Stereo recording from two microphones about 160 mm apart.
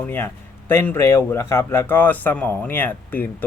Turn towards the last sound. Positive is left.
turn(degrees=10)  # may be behind; listen again after turning